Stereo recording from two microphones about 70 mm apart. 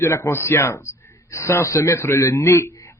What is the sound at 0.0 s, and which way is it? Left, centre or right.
A man's voice, left.